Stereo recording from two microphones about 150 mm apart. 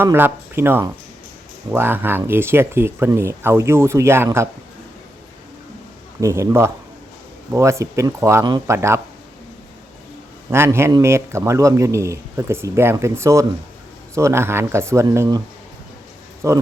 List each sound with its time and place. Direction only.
0.0 s speech: 15° right (ahead or behind)
6.1 s speech: 20° right (ahead or behind)
10.5 s speech: 15° right (ahead or behind)
16.4 s speech: 20° right (ahead or behind)